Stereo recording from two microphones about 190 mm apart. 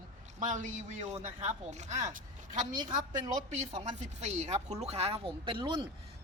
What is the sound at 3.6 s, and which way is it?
Speech, 35° right (ahead or behind).